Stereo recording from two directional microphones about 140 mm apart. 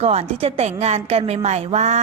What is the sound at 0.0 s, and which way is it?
A woman's voice, 45° right (ahead or behind).